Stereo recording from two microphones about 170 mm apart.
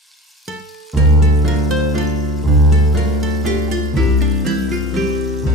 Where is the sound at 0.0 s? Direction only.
Centre (ahead or behind).